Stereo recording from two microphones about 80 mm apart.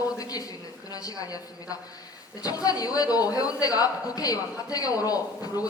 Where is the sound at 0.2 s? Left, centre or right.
Left.